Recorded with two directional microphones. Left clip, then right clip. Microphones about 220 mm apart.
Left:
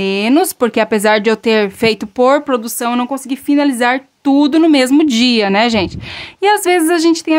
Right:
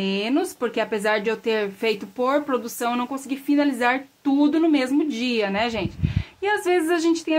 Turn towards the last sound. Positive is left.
turn(degrees=50)  # may be behind; listen again after turning